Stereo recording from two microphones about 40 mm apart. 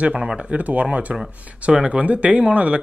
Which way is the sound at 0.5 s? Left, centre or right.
Right.